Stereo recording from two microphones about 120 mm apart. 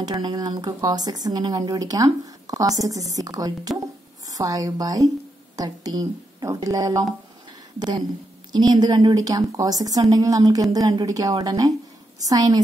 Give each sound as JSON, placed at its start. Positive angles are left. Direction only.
{"t": 0.0, "sound": "speech", "side_deg": -35}
{"t": 8.5, "sound": "speech", "side_deg": -35}